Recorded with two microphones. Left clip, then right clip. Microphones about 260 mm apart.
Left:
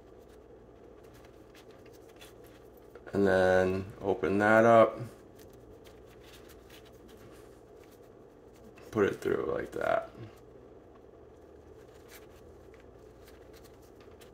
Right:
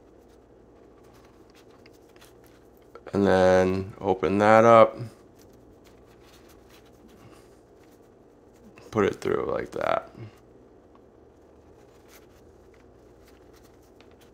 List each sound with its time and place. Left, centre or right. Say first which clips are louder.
3.1 s speech: right 6 dB; right
8.9 s speech: right 4 dB; right